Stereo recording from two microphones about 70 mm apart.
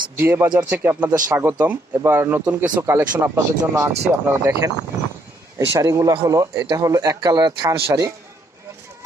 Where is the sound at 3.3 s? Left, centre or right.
Right.